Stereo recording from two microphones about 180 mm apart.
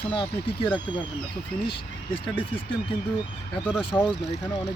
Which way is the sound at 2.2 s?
30° left (ahead or behind).